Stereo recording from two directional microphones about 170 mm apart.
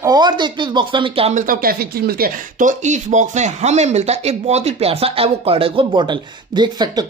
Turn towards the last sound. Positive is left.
turn(degrees=-25)  # may be behind; listen again after turning